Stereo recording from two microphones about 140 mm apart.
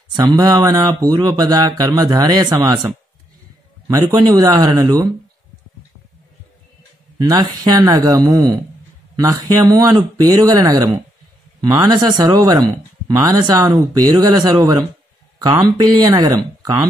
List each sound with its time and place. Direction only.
0.1 s speech: 30° right (ahead or behind)
3.8 s speech: 25° right (ahead or behind)
7.2 s speech: 30° right (ahead or behind)